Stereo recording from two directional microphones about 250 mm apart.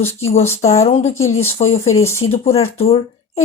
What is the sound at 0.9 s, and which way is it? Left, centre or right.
Speech, left.